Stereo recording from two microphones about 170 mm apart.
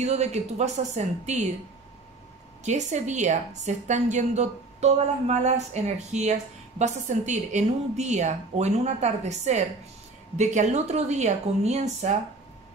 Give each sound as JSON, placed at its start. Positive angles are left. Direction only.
{"t": 0.0, "sound": "speech", "side_deg": -40}
{"t": 2.6, "sound": "a woman's voice", "side_deg": -45}